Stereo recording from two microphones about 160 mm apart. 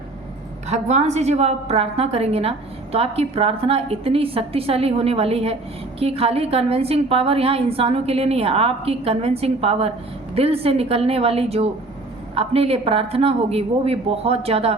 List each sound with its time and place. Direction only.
0.7 s a woman's voice: 45° right (ahead or behind)